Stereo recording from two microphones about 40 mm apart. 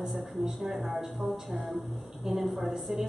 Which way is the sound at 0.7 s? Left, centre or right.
Centre.